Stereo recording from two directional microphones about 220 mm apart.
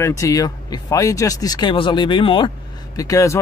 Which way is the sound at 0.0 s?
15° left (ahead or behind).